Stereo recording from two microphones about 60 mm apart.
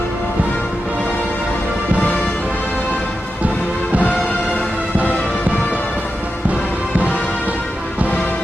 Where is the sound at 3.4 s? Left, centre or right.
Right.